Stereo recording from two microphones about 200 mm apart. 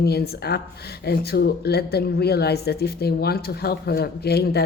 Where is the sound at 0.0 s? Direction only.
55° left (ahead or behind).